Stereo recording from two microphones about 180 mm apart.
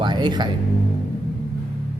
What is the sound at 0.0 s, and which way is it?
Music, 25° right (ahead or behind).